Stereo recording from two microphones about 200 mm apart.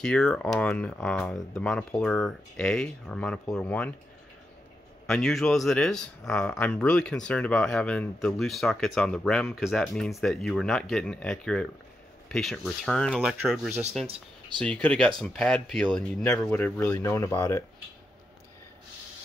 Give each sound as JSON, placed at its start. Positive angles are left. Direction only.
{"t": 0.0, "sound": "speech", "side_deg": 5}
{"t": 5.0, "sound": "speech", "side_deg": 0}
{"t": 14.0, "sound": "speech", "side_deg": -30}
{"t": 14.6, "sound": "speech", "side_deg": 5}